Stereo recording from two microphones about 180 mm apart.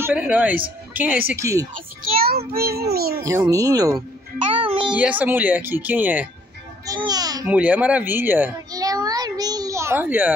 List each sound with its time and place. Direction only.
0.0 s speech: 10° right (ahead or behind)
2.0 s child singing: 55° right (ahead or behind)
2.9 s a child's voice: 60° right (ahead or behind)
3.2 s speech: 20° right (ahead or behind)
4.6 s a sound: 30° right (ahead or behind)
4.9 s speech: 10° right (ahead or behind)
6.9 s speech: 20° right (ahead or behind)
7.4 s a sound: 10° right (ahead or behind)